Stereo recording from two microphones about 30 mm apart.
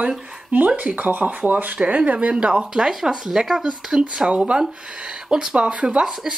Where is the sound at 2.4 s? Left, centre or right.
Right.